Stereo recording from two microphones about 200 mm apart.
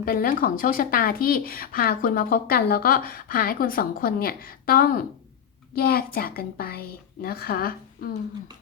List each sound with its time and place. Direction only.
0.0 s speech: 45° left (ahead or behind)